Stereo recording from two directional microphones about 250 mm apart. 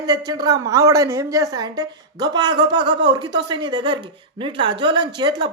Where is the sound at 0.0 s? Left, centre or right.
Centre.